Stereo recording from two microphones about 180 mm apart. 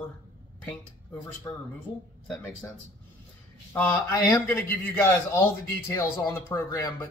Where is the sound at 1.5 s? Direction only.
20° left (ahead or behind).